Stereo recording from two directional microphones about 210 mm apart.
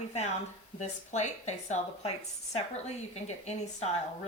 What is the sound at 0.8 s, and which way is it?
A woman's voice, 35° left (ahead or behind).